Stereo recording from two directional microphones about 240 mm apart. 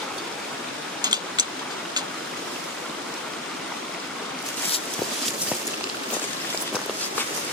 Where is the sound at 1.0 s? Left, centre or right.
Centre.